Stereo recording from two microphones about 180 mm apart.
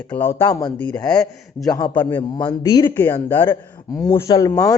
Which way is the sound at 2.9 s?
10° left (ahead or behind).